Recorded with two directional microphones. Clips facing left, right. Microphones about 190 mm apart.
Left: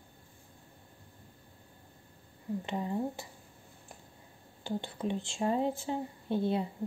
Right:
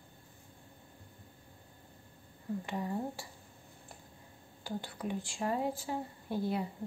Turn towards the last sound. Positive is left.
turn(degrees=25)  # may be behind; listen again after turning